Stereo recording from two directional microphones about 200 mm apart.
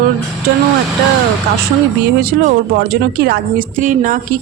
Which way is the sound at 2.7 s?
50° right (ahead or behind).